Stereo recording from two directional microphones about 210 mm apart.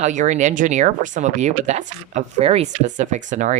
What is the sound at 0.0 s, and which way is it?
Speech, 35° right (ahead or behind).